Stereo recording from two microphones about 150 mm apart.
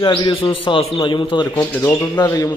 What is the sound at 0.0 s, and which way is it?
Speech, 35° left (ahead or behind).